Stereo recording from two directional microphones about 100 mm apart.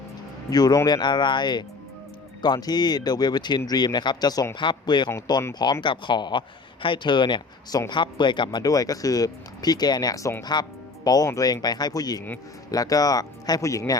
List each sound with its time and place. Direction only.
0.5 s speech: 40° left (ahead or behind)